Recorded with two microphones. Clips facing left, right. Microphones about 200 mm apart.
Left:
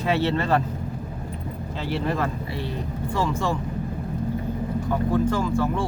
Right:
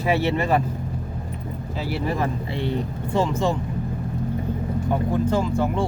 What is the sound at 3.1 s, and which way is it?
Speech, 20° right (ahead or behind).